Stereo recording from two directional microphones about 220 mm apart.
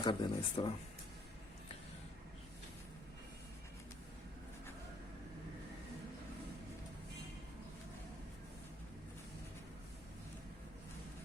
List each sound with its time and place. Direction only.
0.0 s speech: 20° left (ahead or behind)